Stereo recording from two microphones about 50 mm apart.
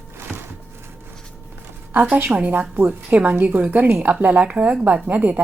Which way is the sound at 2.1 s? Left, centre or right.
Right.